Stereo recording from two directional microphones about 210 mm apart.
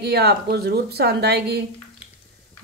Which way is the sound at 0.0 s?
50° right (ahead or behind).